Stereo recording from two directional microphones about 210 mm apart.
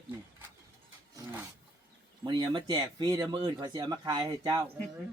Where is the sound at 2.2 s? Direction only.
20° right (ahead or behind).